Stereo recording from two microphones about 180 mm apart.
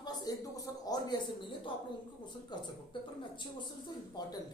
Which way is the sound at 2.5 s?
25° left (ahead or behind).